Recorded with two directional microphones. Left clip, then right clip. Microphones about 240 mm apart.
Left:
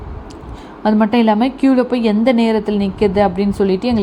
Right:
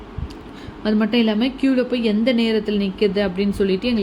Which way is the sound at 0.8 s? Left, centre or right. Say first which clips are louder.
Left 5 dB; centre.